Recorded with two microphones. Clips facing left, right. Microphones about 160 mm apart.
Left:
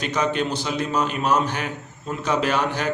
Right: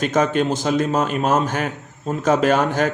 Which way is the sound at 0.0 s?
45° right (ahead or behind).